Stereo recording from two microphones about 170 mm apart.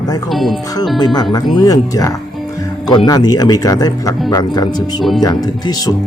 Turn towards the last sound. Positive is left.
turn(degrees=25)  # may be behind; listen again after turning